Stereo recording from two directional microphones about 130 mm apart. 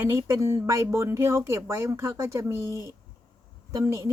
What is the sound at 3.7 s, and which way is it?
Speech, 25° right (ahead or behind).